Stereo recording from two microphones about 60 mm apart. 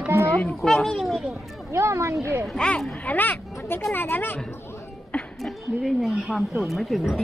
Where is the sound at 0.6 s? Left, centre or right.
Centre.